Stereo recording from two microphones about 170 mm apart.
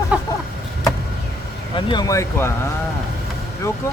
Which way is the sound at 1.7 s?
25° left (ahead or behind).